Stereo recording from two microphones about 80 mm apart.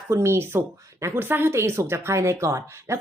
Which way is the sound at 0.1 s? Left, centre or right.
Right.